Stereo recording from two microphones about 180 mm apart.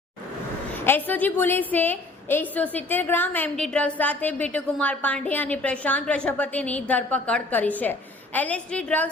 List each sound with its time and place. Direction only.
0.9 s a woman's voice: 10° left (ahead or behind)